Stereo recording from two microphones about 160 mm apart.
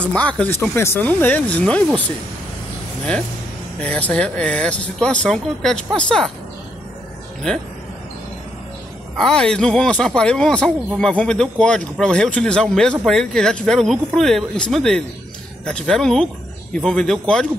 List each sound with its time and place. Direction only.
0.0 s speech: 5° left (ahead or behind)
3.8 s speech: 10° left (ahead or behind)
7.5 s speech: 5° left (ahead or behind)
9.1 s speech: 5° left (ahead or behind)